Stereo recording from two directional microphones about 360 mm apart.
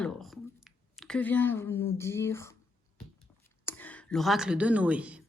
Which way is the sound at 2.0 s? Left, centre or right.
Centre.